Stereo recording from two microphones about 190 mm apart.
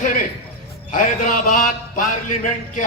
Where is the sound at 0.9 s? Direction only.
45° left (ahead or behind).